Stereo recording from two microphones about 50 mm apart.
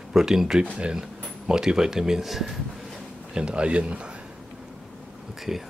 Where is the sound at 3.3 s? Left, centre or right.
Right.